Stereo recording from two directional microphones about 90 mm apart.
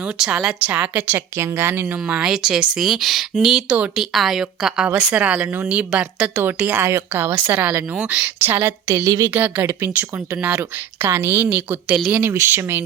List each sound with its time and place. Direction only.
0.0 s speech: 10° right (ahead or behind)
1.4 s speech: 25° right (ahead or behind)
2.0 s a woman's voice: 10° right (ahead or behind)
8.4 s speech: 25° right (ahead or behind)
9.0 s speech: 40° right (ahead or behind)
9.2 s speech: 20° right (ahead or behind)